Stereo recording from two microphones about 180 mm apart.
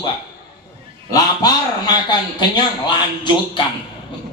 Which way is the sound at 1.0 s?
20° left (ahead or behind).